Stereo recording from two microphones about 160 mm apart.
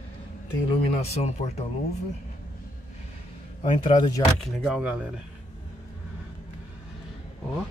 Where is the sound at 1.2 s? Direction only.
45° left (ahead or behind).